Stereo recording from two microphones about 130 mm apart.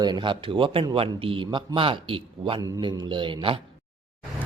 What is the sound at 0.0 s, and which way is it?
A man's voice, 35° right (ahead or behind).